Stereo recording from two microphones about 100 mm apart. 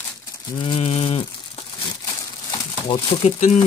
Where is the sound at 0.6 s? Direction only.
80° left.